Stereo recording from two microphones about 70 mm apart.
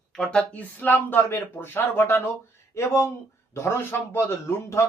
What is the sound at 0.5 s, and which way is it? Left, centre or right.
Speech, left.